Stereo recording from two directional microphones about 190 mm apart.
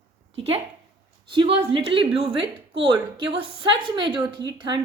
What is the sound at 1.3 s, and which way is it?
A woman's voice, 25° right (ahead or behind).